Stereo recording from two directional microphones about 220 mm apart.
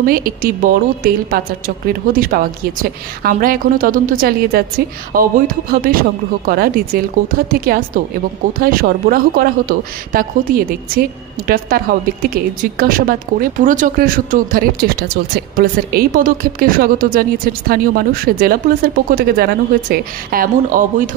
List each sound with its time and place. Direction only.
0.0 s speech: 40° right (ahead or behind)